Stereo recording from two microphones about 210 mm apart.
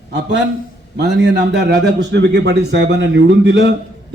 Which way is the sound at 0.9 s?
55° right (ahead or behind).